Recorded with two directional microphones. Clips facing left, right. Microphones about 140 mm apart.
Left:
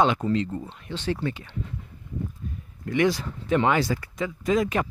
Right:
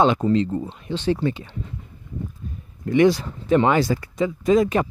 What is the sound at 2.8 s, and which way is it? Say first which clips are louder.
Speech: right 6 dB; 25° right (ahead or behind).